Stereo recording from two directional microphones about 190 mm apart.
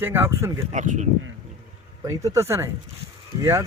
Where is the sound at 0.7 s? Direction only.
40° right (ahead or behind).